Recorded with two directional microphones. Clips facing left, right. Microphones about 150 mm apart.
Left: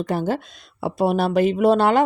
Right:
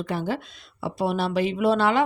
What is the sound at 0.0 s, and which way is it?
Speech, 40° left (ahead or behind).